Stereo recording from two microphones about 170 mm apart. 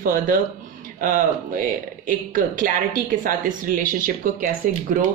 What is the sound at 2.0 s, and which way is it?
Speech, 50° right (ahead or behind).